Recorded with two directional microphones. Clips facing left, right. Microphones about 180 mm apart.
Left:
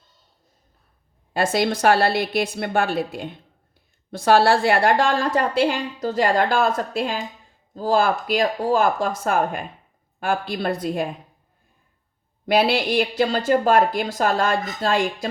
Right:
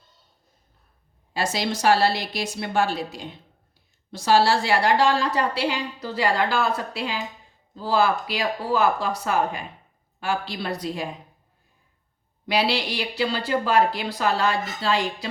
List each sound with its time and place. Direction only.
1.3 s a woman's voice: 55° left (ahead or behind)
12.5 s a woman's voice: 50° left (ahead or behind)